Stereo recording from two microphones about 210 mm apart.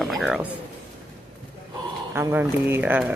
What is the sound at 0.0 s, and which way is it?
Music, centre (ahead or behind).